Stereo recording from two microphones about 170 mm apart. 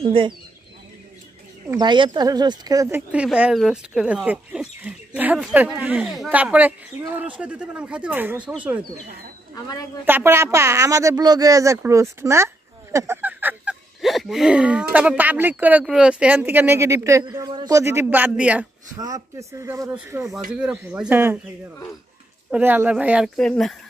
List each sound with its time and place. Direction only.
0.0 s speech: 30° right (ahead or behind)
1.7 s speech: 25° right (ahead or behind)
3.1 s speech: 5° right (ahead or behind)
10.0 s speech: 15° right (ahead or behind)
12.9 s a sound: 15° right (ahead or behind)
14.0 s speech: centre (ahead or behind)
18.9 s speech: 20° right (ahead or behind)
22.5 s speech: 10° right (ahead or behind)
23.3 s speech: 5° left (ahead or behind)